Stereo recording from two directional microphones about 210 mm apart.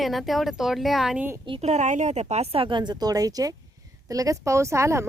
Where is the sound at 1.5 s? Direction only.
30° right (ahead or behind).